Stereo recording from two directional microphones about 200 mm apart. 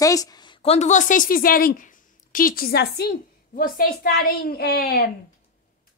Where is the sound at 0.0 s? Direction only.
15° left (ahead or behind); by 5.0 s 50° left (ahead or behind).